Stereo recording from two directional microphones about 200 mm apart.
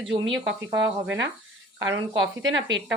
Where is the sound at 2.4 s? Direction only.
70° right (ahead or behind).